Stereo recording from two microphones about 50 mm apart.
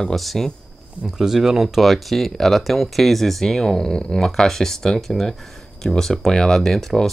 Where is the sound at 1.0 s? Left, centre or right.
Centre.